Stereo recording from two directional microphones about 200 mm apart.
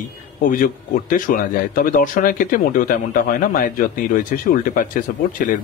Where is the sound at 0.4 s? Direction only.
40° left (ahead or behind).